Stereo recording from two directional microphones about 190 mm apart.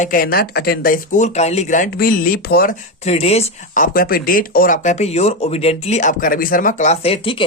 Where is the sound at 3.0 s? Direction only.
35° left (ahead or behind).